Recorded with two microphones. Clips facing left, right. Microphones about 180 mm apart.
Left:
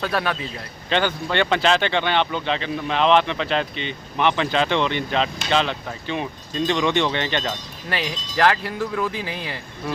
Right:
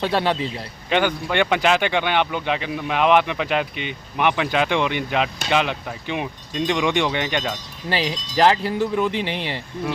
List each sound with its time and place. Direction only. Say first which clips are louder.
0.0 s speech: right 3 dB; 25° right (ahead or behind)
0.9 s speech: right 1 dB; 10° right (ahead or behind)
7.9 s speech: right 3 dB; 25° right (ahead or behind)